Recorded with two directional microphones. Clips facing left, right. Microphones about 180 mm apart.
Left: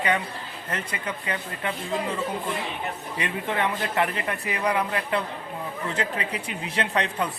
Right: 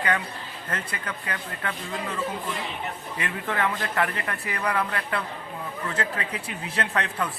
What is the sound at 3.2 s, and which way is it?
A man's voice, 25° left (ahead or behind).